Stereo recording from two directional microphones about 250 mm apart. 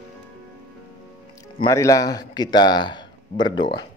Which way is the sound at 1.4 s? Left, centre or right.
Centre.